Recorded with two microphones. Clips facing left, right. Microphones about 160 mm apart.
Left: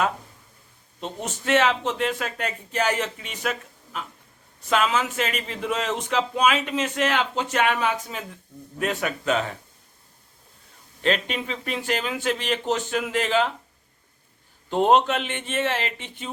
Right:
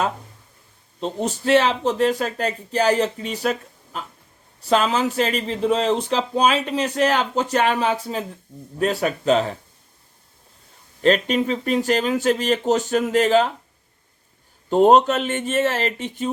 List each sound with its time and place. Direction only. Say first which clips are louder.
0.9 s speech: right 7 dB; 35° right (ahead or behind)
11.0 s speech: right 7 dB; 40° right (ahead or behind)
14.7 s speech: right 5 dB; 40° right (ahead or behind)